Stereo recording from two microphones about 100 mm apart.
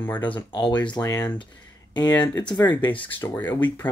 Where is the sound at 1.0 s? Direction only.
35° left (ahead or behind).